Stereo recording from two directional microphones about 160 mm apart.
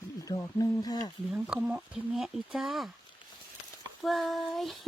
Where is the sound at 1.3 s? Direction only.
10° right (ahead or behind).